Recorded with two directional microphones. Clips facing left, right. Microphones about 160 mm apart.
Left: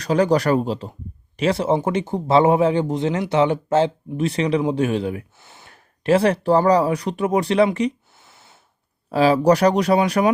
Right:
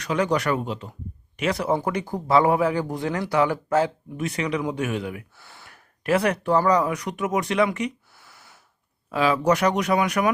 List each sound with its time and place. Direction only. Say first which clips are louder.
0.0 s speech: left 5 dB; 35° left (ahead or behind)
9.0 s speech: left 5 dB; 35° left (ahead or behind)